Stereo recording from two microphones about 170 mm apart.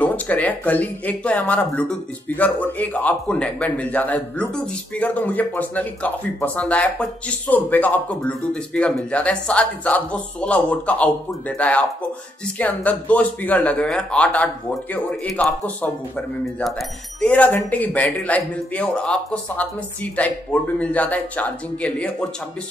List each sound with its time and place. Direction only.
0.0 s a man's voice: 10° left (ahead or behind)